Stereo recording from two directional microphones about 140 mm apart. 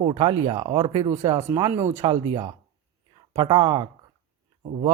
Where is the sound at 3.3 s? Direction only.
35° right (ahead or behind).